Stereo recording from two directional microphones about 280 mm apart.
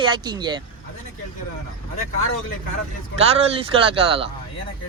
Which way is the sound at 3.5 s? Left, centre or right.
Centre.